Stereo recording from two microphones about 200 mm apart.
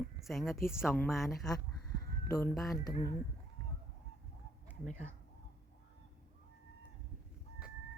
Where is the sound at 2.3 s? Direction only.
15° left (ahead or behind).